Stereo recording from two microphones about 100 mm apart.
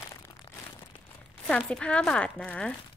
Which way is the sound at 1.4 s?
10° left (ahead or behind).